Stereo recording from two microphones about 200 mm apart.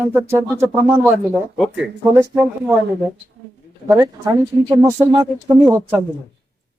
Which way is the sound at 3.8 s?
15° right (ahead or behind).